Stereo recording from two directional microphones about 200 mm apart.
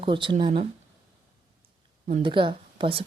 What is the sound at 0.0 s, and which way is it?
Speech, 25° right (ahead or behind).